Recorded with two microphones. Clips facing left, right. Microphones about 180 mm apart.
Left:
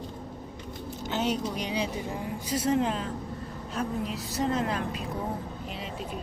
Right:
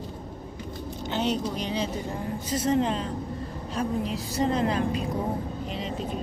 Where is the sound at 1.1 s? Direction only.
10° left (ahead or behind).